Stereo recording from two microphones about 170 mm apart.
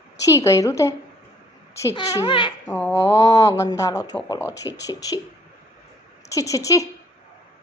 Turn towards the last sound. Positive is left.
turn(degrees=20)  # may be behind; listen again after turning